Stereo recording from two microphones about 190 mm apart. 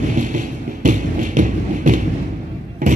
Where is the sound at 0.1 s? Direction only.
45° right (ahead or behind).